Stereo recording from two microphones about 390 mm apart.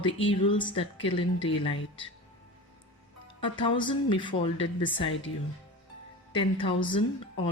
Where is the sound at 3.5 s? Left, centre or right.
Centre.